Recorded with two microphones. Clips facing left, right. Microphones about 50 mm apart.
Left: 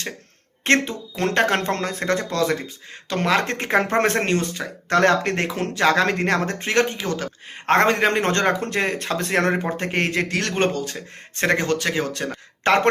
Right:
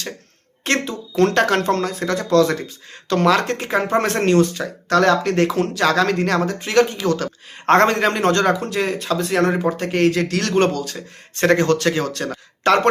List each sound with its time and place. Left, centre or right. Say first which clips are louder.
0.6 s speech: left 2 dB; left
1.1 s speech: right 4 dB; centre
1.6 s speech: right 3 dB; left
2.3 s speech: right 6 dB; centre
3.4 s speech: right 1 dB; left
3.8 s speech: right 1 dB; left
4.0 s speech: right 4 dB; left
5.5 s speech: right 2 dB; left
8.4 s speech: right 2 dB; left; by 12.7 s centre